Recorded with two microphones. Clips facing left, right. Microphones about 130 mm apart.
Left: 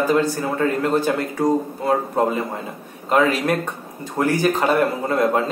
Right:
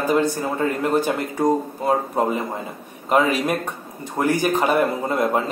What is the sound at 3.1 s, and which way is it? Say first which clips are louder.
A man's voice: left 1 dB; 10° right (ahead or behind).